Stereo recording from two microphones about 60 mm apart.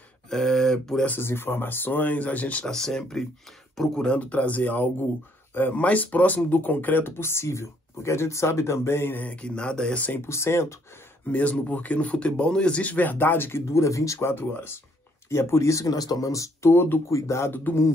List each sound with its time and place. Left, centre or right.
0.3 s speech: centre
1.2 s speech: left
2.6 s speech: centre; by 9.1 s left
9.1 s speech: left
10.2 s speech: left
11.3 s speech: left
14.2 s speech: left
15.2 s speech: left